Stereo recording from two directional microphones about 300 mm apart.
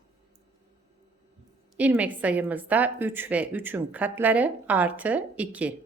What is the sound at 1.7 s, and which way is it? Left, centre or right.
A woman's voice, centre.